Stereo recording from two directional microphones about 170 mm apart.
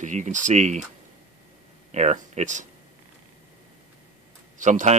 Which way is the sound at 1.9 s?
40° right (ahead or behind).